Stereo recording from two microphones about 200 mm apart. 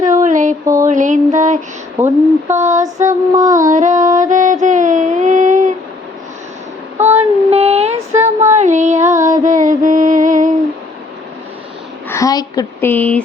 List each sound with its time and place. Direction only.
0.0 s a sound: 40° right (ahead or behind)
0.6 s mantra: 15° right (ahead or behind)
0.9 s a sound: 40° right (ahead or behind)
3.1 s child singing: 15° right (ahead or behind)
3.6 s music: 40° right (ahead or behind)
7.2 s female singing: 30° right (ahead or behind)
8.4 s music: 35° right (ahead or behind)
12.0 s speech: 15° left (ahead or behind)